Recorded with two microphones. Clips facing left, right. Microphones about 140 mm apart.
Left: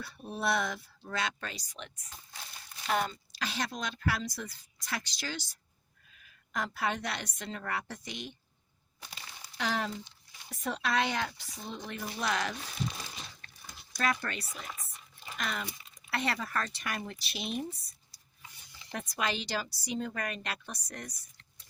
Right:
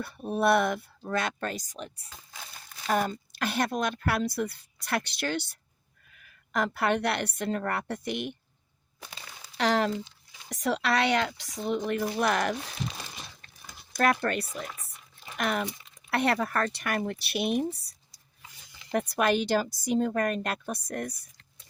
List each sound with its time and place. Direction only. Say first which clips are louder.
0.0 s speech: right 8 dB; 55° right (ahead or behind)
9.6 s speech: right 8 dB; 75° right (ahead or behind); by 12.5 s 55° right (ahead or behind)
13.9 s speech: right 7 dB; 55° right (ahead or behind)
15.4 s speech: right 8 dB; 60° right (ahead or behind)
18.9 s speech: right 9 dB; 60° right (ahead or behind)